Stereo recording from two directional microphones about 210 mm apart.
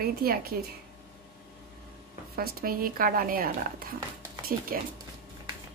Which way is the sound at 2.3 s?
45° right (ahead or behind).